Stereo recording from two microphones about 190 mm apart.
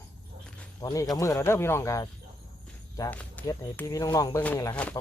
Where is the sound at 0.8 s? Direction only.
20° left (ahead or behind).